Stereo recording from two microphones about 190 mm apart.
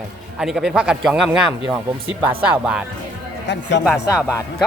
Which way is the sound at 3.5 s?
70° left (ahead or behind).